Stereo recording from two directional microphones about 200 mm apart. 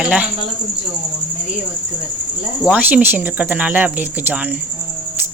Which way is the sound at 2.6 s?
5° right (ahead or behind).